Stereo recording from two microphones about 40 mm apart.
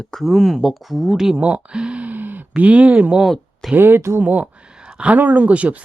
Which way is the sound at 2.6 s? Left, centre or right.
Right.